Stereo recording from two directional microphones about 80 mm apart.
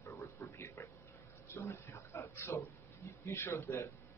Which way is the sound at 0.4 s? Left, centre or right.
Left.